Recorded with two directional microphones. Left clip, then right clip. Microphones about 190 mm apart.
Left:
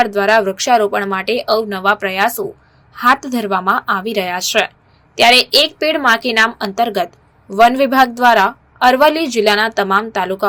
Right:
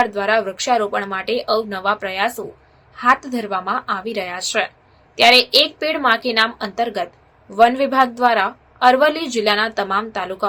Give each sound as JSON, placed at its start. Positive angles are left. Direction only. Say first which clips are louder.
{"t": 0.0, "sound": "a woman's voice", "louder": "left 5 dB", "side_deg": 20}